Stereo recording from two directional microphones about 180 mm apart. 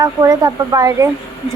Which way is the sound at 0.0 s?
20° right (ahead or behind).